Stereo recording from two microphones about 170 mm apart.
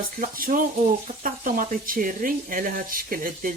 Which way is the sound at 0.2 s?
55° right (ahead or behind).